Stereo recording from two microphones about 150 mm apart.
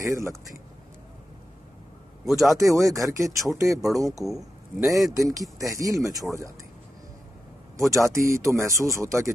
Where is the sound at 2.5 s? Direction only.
20° right (ahead or behind).